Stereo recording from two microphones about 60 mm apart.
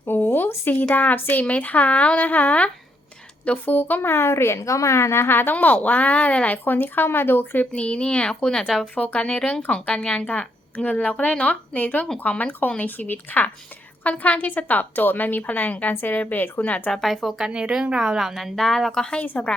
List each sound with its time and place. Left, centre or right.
0.0 s a sound: left
0.9 s a woman's voice: left
6.7 s a woman's voice: left
7.7 s a woman's voice: centre
16.9 s a woman's voice: centre
18.9 s speech: centre
19.2 s a woman's voice: left